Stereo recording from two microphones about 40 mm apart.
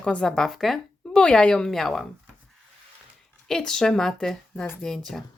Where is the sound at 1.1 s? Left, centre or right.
Left.